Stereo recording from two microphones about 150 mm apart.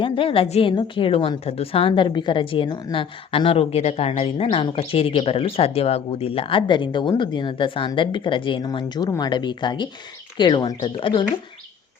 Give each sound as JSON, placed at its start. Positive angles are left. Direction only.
{"t": 0.0, "sound": "a woman's voice", "side_deg": 35}